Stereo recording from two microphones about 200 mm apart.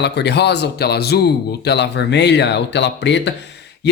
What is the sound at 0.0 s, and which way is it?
Speech, 60° left (ahead or behind).